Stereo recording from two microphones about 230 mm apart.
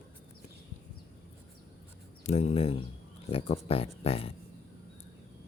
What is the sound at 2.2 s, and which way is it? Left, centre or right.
Speech, left.